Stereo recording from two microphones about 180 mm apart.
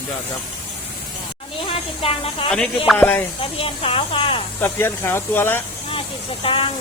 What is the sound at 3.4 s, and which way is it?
Speech, 30° left (ahead or behind).